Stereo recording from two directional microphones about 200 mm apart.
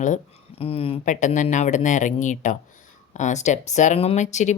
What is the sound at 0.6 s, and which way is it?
Speech, 30° left (ahead or behind).